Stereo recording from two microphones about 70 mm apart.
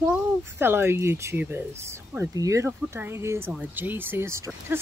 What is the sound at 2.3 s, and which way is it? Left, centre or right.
Speech, right.